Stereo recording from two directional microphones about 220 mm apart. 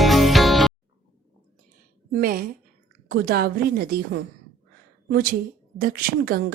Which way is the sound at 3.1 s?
45° right (ahead or behind).